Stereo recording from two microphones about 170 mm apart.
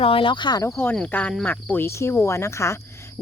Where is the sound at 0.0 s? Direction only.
30° left (ahead or behind).